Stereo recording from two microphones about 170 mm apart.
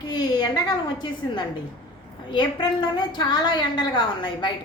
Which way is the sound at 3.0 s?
25° left (ahead or behind).